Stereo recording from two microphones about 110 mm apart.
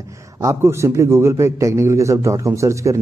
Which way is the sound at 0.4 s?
25° right (ahead or behind).